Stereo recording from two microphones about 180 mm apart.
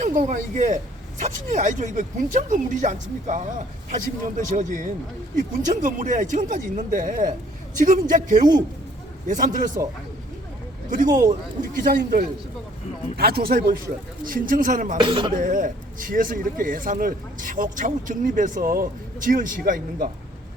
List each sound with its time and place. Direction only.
0.0 s speech: 45° right (ahead or behind)
11.8 s speech: 50° right (ahead or behind)
15.0 s speech: 30° right (ahead or behind)
15.4 s speech: 50° right (ahead or behind)